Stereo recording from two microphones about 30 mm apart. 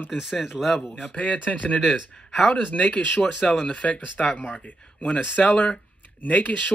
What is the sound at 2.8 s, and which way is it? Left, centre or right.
Speech, left.